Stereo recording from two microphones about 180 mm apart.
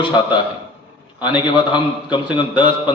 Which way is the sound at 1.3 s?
25° left (ahead or behind).